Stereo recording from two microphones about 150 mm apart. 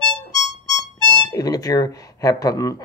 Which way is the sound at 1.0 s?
25° left (ahead or behind).